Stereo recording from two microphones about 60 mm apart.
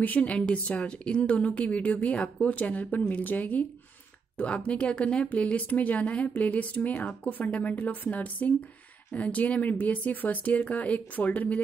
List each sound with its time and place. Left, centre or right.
0.0 s speech: left